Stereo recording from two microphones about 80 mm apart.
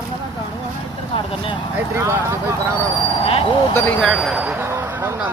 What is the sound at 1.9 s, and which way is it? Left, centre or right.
Speech, right.